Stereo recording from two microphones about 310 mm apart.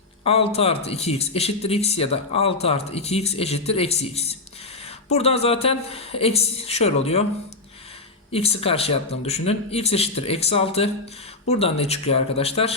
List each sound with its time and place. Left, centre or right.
0.3 s speech: centre
8.3 s speech: centre